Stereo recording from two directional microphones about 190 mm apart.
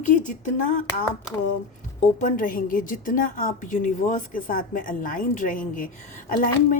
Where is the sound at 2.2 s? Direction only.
45° left (ahead or behind).